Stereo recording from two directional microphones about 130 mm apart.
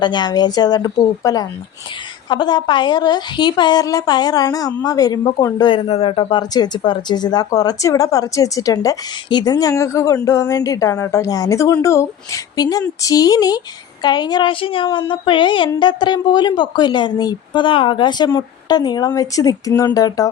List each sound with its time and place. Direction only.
0.0 s a woman's voice: 35° left (ahead or behind)
5.6 s a woman's voice: 45° left (ahead or behind); by 20.3 s 30° left (ahead or behind)